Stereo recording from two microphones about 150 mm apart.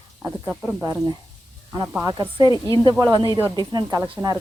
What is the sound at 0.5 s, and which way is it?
Speech, centre (ahead or behind).